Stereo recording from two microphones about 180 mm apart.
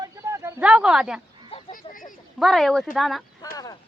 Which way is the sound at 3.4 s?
20° left (ahead or behind).